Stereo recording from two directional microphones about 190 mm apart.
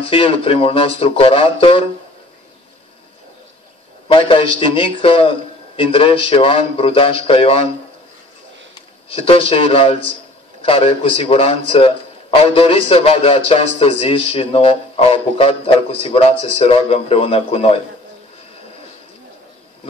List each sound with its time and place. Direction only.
0.0 s speech: 30° left (ahead or behind)
4.1 s speech: 25° left (ahead or behind)
9.1 s speech: 30° left (ahead or behind)